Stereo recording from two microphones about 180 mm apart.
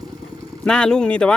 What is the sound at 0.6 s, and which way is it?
Speech, 5° left (ahead or behind).